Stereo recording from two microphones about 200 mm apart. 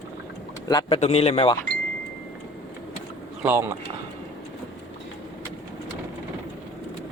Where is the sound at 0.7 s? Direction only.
25° left (ahead or behind).